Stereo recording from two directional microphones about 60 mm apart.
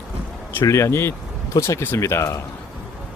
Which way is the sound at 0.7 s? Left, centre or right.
Left.